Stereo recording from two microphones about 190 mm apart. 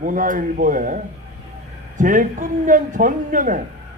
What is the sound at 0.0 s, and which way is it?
Speech, 45° right (ahead or behind).